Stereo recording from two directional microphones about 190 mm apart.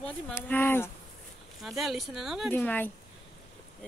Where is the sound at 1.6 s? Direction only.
Centre (ahead or behind).